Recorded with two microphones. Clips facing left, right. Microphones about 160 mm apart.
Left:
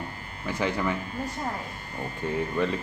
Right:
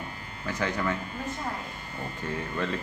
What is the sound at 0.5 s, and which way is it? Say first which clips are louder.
Speech: left 2 dB; 10° left (ahead or behind).